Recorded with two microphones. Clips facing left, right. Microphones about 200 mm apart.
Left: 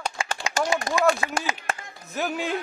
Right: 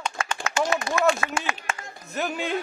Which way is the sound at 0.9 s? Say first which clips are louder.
Left 1 dB; 40° left (ahead or behind).